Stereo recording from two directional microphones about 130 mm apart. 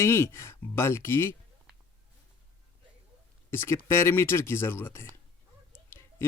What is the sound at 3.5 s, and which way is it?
Speech, 20° left (ahead or behind).